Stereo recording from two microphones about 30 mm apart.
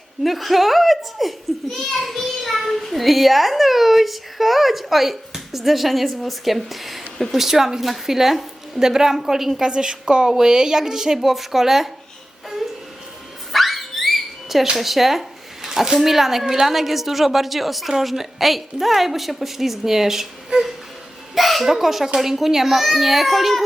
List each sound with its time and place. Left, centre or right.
0.2 s a child's voice: centre
1.7 s a child's voice: centre
2.2 s a child's voice: centre
7.4 s a woman's voice: centre
9.6 s speech: right
10.2 s speech: right
11.2 s a woman's voice: centre
12.6 s music: centre
13.5 s a sound: centre
15.7 s a woman's voice: centre
16.0 s a woman's voice: centre
21.3 s a sound: centre
21.7 s a woman's voice: centre